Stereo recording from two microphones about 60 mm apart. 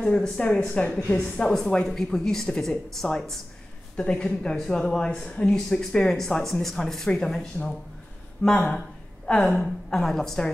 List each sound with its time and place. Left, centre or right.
0.0 s speech: centre
0.9 s speech: centre
3.9 s a woman's voice: centre